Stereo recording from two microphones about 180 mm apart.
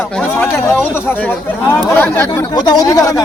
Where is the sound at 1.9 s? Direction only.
10° left (ahead or behind).